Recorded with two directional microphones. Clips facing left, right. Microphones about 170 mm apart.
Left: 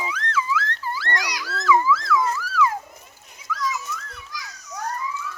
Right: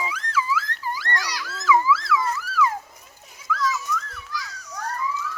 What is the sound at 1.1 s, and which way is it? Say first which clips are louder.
Dog: left 3 dB; 15° left (ahead or behind).